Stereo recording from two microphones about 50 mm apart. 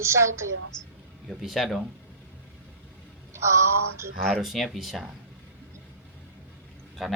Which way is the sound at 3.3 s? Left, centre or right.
Right.